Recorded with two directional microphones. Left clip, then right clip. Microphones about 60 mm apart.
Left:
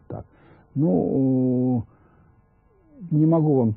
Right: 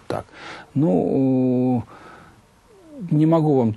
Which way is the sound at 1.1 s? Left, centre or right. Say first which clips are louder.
Right 3 dB; centre.